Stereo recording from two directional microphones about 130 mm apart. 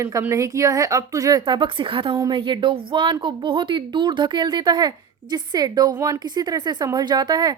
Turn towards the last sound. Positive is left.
turn(degrees=-30)  # may be behind; listen again after turning